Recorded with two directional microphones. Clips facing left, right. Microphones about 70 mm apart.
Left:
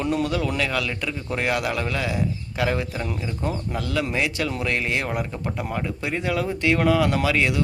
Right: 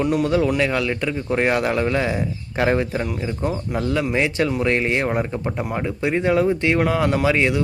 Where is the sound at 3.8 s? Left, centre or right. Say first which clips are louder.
Right 5 dB; right.